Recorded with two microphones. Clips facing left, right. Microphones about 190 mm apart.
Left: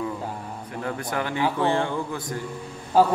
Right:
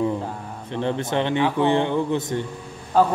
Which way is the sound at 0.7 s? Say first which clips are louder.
Right 6 dB; 25° right (ahead or behind).